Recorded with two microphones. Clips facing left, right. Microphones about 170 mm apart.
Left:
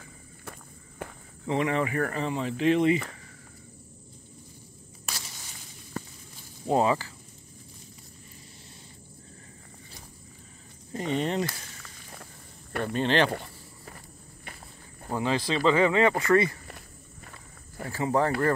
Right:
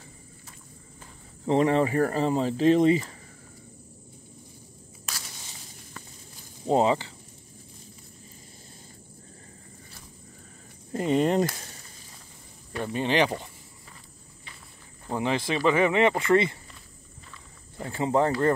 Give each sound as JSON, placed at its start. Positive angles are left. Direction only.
{"t": 0.5, "sound": "walk", "side_deg": 70}
{"t": 1.4, "sound": "speech", "side_deg": -30}
{"t": 6.7, "sound": "speech", "side_deg": -25}
{"t": 10.9, "sound": "speech", "side_deg": -40}
{"t": 12.9, "sound": "speech", "side_deg": -10}
{"t": 13.8, "sound": "walk", "side_deg": 55}
{"t": 15.0, "sound": "speech", "side_deg": -20}
{"t": 17.7, "sound": "speech", "side_deg": -25}